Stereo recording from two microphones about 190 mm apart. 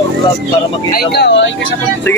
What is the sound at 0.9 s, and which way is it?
Speech, 60° left (ahead or behind).